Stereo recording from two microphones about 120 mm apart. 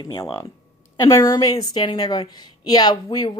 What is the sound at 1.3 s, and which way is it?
A woman's voice, 35° left (ahead or behind).